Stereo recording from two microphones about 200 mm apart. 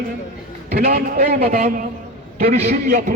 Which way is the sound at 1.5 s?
40° right (ahead or behind).